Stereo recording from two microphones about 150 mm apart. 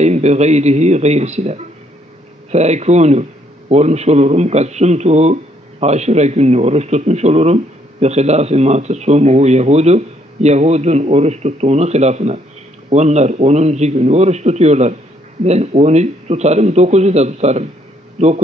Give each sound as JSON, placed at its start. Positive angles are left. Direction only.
{"t": 0.0, "sound": "a man's voice", "side_deg": -50}